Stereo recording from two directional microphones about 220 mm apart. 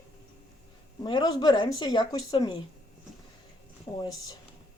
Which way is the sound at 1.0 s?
20° left (ahead or behind).